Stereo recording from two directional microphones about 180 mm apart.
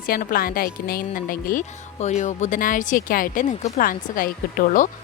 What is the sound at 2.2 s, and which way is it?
Speech, 40° left (ahead or behind).